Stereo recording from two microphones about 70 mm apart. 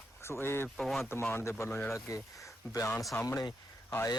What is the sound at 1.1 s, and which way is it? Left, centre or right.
Speech, left.